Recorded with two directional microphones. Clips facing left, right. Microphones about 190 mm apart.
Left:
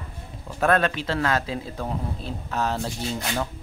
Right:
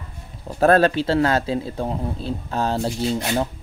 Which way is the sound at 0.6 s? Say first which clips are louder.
Right 6 dB; 35° right (ahead or behind).